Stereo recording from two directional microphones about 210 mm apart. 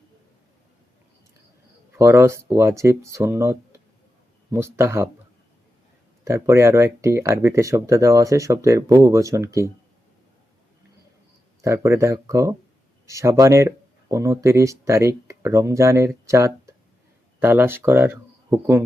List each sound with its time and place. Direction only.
2.0 s speech: 15° right (ahead or behind)
6.2 s speech: 15° right (ahead or behind)
11.6 s speech: 15° right (ahead or behind)